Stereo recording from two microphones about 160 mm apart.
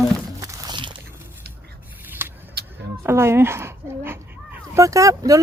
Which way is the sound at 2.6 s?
80° right.